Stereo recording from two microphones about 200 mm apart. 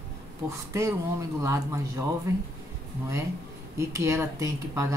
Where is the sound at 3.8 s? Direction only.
15° right (ahead or behind).